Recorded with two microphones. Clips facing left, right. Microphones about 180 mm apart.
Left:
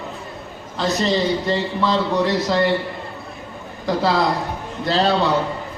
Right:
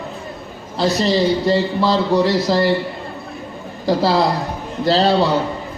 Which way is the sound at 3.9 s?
35° right (ahead or behind).